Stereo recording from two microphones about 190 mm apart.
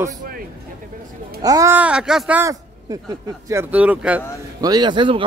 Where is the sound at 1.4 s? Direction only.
15° right (ahead or behind).